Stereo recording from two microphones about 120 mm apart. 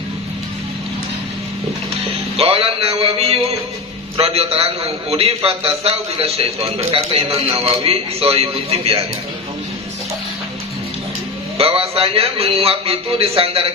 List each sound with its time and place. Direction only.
2.3 s a man's voice: 55° right (ahead or behind)
11.5 s a man's voice: 55° right (ahead or behind)